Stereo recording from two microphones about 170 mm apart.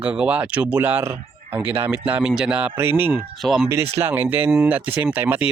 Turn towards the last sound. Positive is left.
turn(degrees=-10)  # may be behind; listen again after turning